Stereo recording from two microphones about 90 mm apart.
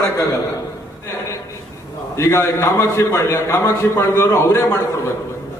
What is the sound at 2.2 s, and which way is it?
A man's voice, 35° left (ahead or behind).